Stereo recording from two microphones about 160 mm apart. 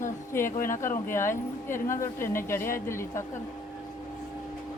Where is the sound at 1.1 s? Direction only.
15° left (ahead or behind).